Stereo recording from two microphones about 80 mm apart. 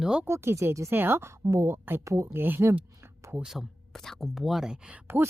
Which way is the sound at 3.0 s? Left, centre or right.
Right.